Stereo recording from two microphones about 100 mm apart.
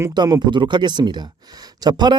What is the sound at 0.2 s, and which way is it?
Speech, 35° right (ahead or behind).